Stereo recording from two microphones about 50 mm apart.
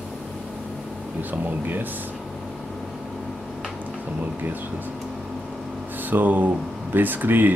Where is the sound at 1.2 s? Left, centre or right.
Right.